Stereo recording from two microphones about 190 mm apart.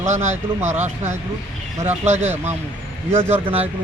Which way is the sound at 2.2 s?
10° right (ahead or behind).